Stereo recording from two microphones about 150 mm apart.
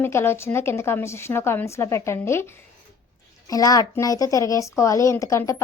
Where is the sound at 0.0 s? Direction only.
15° left (ahead or behind).